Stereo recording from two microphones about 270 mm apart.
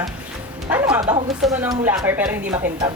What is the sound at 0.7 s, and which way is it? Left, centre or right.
Speech, centre.